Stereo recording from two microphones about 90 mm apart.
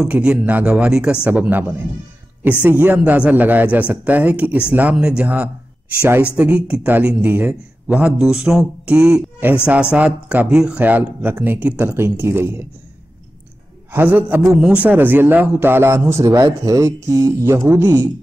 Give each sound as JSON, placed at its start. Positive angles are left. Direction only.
{"t": 0.0, "sound": "a man's voice", "side_deg": -10}
{"t": 13.9, "sound": "speech", "side_deg": -20}